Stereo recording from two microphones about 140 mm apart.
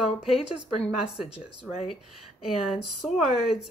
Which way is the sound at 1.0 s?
5° right (ahead or behind).